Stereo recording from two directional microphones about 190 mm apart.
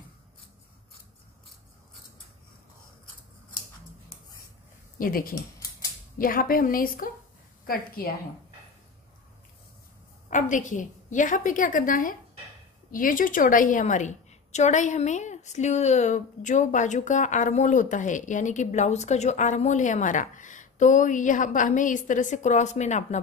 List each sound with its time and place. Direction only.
4.9 s speech: 50° left (ahead or behind)
5.3 s scissors: 20° left (ahead or behind)
6.1 s a woman's voice: 50° left (ahead or behind)
10.3 s a woman's voice: 40° left (ahead or behind)